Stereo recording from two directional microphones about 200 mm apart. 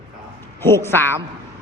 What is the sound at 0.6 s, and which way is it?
Speech, 10° left (ahead or behind).